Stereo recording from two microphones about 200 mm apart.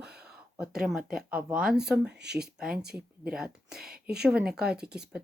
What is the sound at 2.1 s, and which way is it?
Speech, 55° right (ahead or behind).